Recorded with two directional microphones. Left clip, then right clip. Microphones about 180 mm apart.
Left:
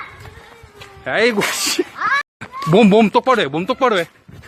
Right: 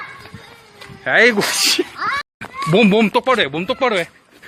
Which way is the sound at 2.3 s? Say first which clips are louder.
Right 2 dB; 35° left (ahead or behind).